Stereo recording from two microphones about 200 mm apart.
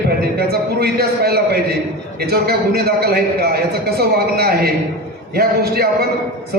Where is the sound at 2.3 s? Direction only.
50° right (ahead or behind).